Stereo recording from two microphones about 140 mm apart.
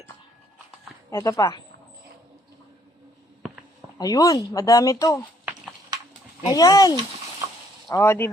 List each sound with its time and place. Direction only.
1.1 s speech: 25° left (ahead or behind)
3.9 s speech: 25° left (ahead or behind)
6.4 s speech: 25° left (ahead or behind)